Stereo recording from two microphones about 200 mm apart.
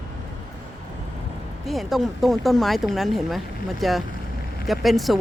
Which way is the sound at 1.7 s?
Centre (ahead or behind).